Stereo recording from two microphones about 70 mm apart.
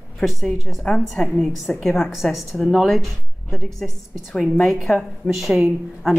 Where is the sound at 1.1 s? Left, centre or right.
Centre.